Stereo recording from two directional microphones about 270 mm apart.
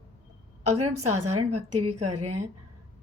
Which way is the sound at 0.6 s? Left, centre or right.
Right.